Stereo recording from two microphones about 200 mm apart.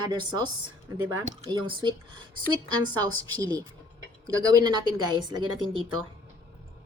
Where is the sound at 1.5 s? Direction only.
20° right (ahead or behind).